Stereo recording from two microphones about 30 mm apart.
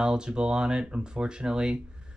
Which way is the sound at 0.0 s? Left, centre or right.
Right.